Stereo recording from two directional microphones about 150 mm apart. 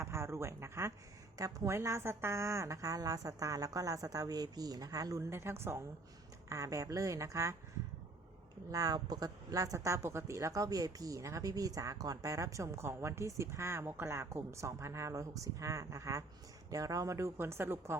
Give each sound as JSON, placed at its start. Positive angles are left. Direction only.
{"t": 0.0, "sound": "a woman's voice", "side_deg": -20}
{"t": 8.7, "sound": "a woman's voice", "side_deg": -25}